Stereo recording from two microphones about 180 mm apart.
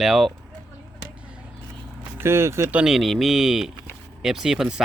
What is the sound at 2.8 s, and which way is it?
Speech, centre (ahead or behind).